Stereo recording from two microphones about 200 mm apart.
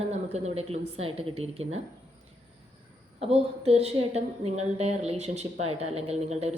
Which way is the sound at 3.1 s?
30° right (ahead or behind).